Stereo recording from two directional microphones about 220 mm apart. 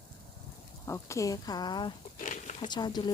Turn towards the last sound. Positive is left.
turn(degrees=20)  # may be behind; listen again after turning